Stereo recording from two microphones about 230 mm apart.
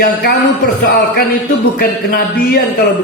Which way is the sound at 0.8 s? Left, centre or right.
Left.